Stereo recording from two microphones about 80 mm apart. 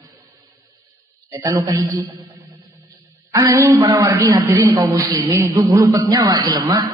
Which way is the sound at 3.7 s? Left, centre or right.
Right.